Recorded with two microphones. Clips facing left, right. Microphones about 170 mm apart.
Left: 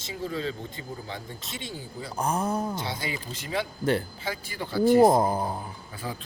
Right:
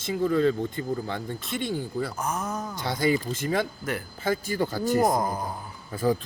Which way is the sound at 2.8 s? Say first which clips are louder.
Right 9 dB; 50° right (ahead or behind).